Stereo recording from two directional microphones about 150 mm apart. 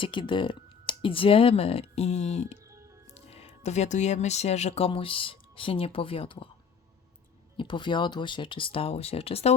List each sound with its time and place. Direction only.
0.0 s speech: 35° left (ahead or behind)
7.5 s speech: 35° left (ahead or behind)